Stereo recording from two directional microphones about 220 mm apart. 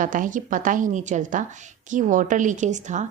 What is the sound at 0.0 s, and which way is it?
A woman's voice, 35° right (ahead or behind).